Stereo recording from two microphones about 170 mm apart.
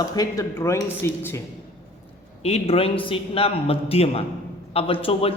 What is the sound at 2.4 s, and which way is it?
A man's voice, 35° left (ahead or behind).